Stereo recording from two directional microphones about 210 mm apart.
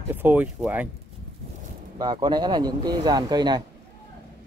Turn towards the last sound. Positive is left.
turn(degrees=-20)  # may be behind; listen again after turning